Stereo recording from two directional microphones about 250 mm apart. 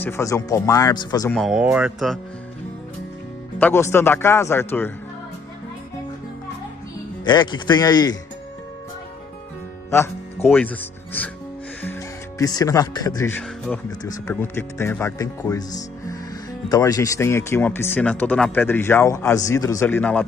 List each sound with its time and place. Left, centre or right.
0.0 s speech: centre
1.3 s speech: centre
3.5 s speech: centre
7.2 s speech: centre
10.5 s speech: centre
12.4 s speech: centre